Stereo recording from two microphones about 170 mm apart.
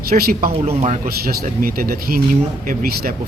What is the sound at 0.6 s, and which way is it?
Speech, 40° right (ahead or behind).